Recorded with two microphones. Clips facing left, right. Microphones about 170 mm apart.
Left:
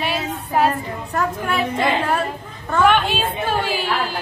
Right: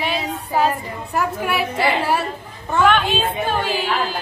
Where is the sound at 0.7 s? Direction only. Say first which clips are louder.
Left 1 dB; 10° right (ahead or behind).